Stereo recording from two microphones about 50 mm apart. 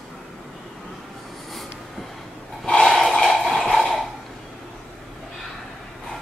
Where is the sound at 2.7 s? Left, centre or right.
Centre.